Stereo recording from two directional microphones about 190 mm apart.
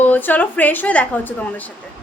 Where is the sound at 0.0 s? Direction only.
10° left (ahead or behind).